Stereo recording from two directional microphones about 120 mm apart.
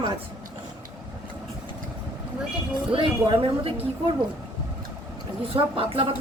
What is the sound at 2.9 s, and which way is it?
Speech, 45° right (ahead or behind).